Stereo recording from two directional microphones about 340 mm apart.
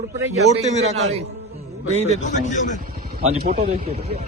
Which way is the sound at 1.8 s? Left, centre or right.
Centre.